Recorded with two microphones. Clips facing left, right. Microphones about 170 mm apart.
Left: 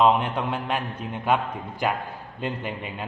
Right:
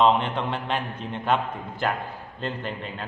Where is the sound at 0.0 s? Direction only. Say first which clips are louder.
Even; 5° left (ahead or behind).